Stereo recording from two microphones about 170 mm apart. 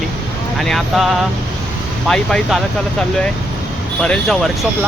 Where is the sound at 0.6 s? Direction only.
Centre (ahead or behind).